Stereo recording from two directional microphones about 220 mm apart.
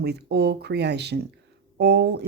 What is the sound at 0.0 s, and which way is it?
Speech, 50° right (ahead or behind).